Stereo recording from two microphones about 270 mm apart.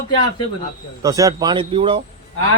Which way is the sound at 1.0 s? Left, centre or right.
Centre.